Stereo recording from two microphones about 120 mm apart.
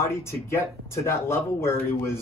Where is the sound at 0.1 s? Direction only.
20° left (ahead or behind).